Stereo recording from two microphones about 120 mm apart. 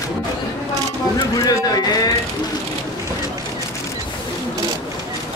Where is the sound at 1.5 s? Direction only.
30° left (ahead or behind).